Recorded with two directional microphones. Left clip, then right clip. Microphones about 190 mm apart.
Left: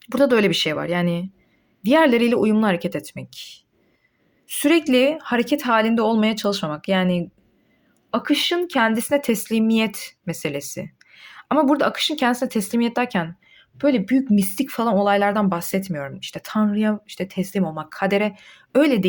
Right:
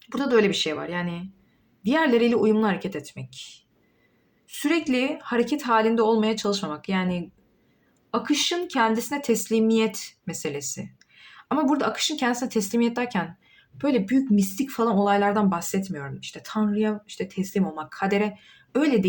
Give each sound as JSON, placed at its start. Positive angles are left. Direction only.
{"t": 0.0, "sound": "speech", "side_deg": 55}